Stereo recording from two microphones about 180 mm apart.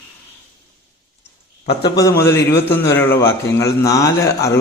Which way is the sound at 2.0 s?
15° left (ahead or behind).